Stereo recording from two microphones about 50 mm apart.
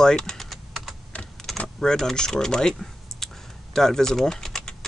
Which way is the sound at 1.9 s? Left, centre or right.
Centre.